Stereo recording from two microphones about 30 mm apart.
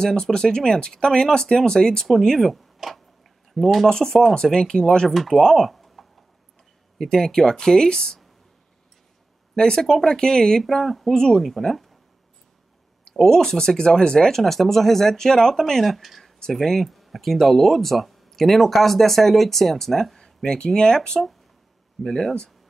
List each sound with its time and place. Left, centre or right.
0.0 s speech: left
2.3 s speech: centre
3.9 s speech: centre
5.4 s speech: centre
5.7 s typing: centre
7.0 s speech: centre
9.6 s speech: centre
10.6 s speech: centre
11.1 s speech: centre
11.4 s speech: centre
13.1 s speech: centre
14.3 s speech: centre
15.8 s speech: centre
20.4 s speech: left